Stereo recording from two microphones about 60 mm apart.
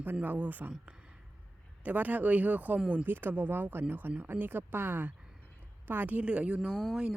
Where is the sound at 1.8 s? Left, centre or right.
Right.